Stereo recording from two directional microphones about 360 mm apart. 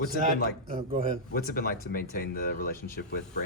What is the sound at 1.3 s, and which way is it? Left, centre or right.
Speech, left.